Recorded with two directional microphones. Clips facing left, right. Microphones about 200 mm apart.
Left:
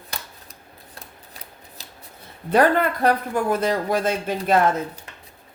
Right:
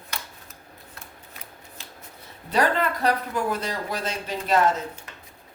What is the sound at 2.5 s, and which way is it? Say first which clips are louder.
Speech: left 5 dB; 55° left (ahead or behind).